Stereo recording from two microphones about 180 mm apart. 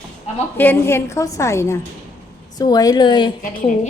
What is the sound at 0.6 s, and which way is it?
A woman's voice, 10° left (ahead or behind).